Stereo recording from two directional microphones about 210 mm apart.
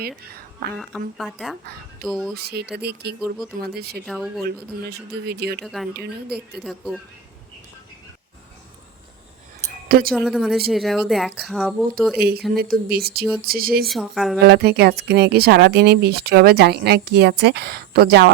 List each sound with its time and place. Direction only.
0.8 s speech: centre (ahead or behind)
2.3 s speech: 50° right (ahead or behind)
3.2 s speech: centre (ahead or behind)
3.6 s speech: 50° right (ahead or behind)
4.0 s speech: centre (ahead or behind)
4.9 s speech: 50° right (ahead or behind)
5.6 s speech: centre (ahead or behind)
5.9 s speech: 50° right (ahead or behind)
6.6 s speech: centre (ahead or behind)
10.1 s speech: centre (ahead or behind)
12.5 s speech: 45° right (ahead or behind)
13.8 s speech: centre (ahead or behind)
14.3 s speech: 50° right (ahead or behind)